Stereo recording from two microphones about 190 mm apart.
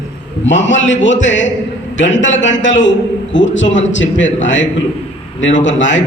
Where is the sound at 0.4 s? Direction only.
75° left (ahead or behind).